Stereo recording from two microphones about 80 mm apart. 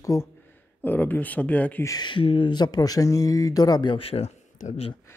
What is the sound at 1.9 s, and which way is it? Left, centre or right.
Speech, left.